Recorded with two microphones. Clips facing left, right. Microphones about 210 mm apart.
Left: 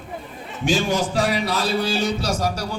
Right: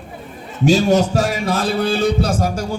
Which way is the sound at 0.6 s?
40° right (ahead or behind).